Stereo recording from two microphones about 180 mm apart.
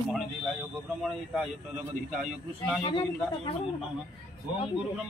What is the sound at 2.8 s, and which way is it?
Speech, 25° left (ahead or behind).